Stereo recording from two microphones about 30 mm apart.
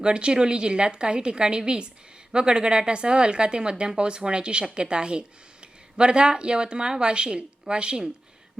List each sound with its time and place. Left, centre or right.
0.0 s speech: right